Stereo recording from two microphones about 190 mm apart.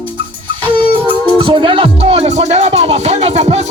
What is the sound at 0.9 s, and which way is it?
Music, 25° right (ahead or behind).